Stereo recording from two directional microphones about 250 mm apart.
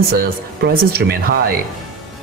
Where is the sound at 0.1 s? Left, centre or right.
Right.